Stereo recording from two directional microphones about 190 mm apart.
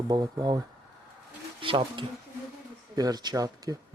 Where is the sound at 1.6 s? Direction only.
25° right (ahead or behind).